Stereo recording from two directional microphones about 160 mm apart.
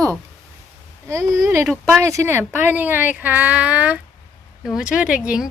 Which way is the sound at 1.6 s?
Centre (ahead or behind).